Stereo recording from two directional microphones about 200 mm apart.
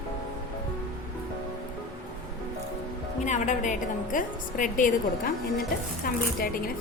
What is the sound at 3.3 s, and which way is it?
A woman's voice, 35° left (ahead or behind).